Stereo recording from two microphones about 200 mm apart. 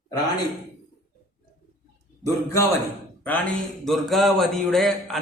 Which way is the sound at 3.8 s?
Centre (ahead or behind).